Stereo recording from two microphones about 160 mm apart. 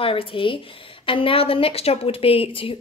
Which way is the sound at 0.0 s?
35° left (ahead or behind).